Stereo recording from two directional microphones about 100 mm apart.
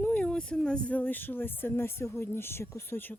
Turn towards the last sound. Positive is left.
turn(degrees=25)  # may be behind; listen again after turning